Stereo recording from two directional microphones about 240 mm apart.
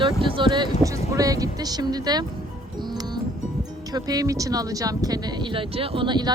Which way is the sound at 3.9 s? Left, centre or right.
Centre.